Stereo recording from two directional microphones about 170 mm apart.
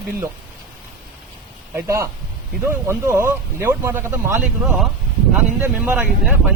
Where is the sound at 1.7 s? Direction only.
15° right (ahead or behind).